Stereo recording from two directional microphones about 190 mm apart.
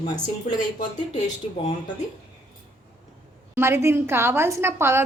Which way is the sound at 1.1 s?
35° left (ahead or behind).